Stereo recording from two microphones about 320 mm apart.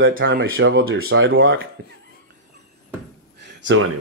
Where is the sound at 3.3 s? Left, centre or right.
Right.